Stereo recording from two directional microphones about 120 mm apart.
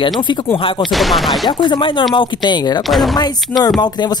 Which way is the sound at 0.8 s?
Centre (ahead or behind).